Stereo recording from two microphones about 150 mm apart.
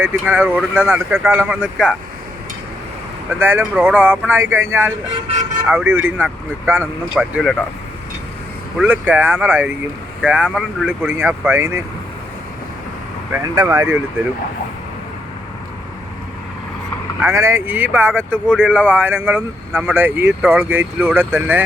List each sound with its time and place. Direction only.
0.0 s speech: 15° right (ahead or behind)
3.3 s speech: 15° right (ahead or behind)
8.8 s speech: 10° right (ahead or behind)
13.4 s speech: 25° right (ahead or behind)
17.2 s speech: 15° right (ahead or behind)